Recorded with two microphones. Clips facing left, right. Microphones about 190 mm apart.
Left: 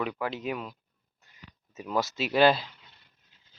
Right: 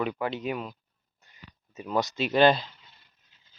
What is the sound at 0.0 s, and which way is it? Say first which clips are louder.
Speech: right 2 dB; centre (ahead or behind).